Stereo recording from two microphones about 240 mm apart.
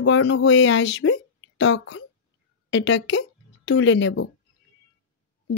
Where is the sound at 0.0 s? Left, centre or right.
Left.